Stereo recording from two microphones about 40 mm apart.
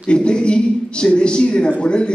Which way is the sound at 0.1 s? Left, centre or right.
Left.